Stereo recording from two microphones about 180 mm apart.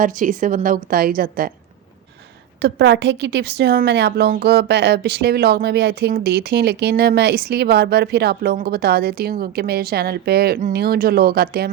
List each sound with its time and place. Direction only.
0.0 s a woman's voice: 45° right (ahead or behind)
2.6 s a woman's voice: 65° right (ahead or behind)